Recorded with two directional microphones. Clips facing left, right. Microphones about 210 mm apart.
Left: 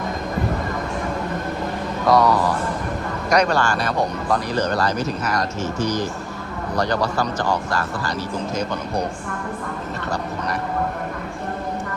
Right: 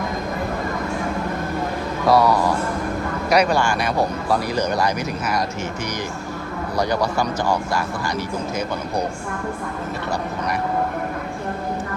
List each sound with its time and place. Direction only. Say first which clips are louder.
2.0 s speech: even; 10° right (ahead or behind)
6.7 s speech: even; 10° right (ahead or behind)